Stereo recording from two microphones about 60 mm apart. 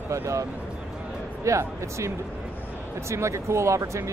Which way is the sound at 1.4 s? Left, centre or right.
Right.